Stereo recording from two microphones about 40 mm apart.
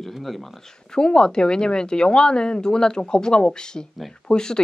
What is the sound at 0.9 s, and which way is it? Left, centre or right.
Speech, centre.